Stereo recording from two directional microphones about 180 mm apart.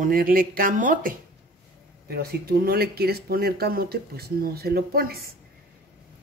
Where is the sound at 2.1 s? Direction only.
60° right (ahead or behind).